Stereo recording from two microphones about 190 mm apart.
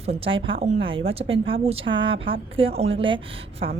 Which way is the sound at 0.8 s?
25° right (ahead or behind).